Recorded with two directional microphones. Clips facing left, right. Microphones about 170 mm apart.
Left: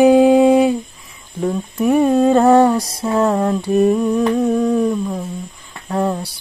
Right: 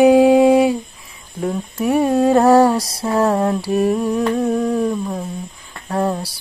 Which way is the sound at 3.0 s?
30° right (ahead or behind).